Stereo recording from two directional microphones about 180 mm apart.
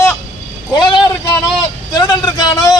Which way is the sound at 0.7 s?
25° left (ahead or behind).